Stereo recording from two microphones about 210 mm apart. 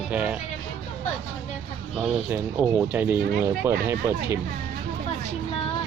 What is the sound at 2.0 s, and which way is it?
Speech, 5° right (ahead or behind).